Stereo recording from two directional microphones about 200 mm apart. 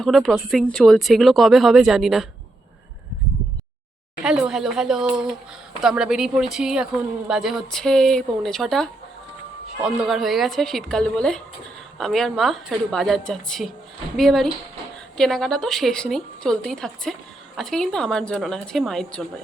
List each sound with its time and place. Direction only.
0.0 s a woman's voice: centre (ahead or behind)
4.2 s a woman's voice: 5° right (ahead or behind)